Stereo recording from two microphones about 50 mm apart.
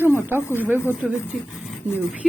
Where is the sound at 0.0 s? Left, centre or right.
Right.